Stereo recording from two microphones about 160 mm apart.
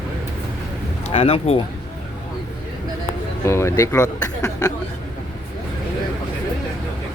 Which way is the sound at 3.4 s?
15° left (ahead or behind).